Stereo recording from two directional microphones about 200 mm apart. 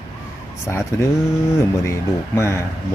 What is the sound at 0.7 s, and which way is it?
Speech, 15° left (ahead or behind).